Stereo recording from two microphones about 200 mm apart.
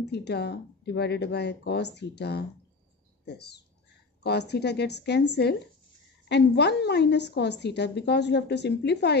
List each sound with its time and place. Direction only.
0.1 s a woman's voice: 55° left (ahead or behind)